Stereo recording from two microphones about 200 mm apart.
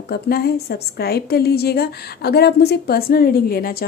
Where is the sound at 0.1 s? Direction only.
50° left (ahead or behind).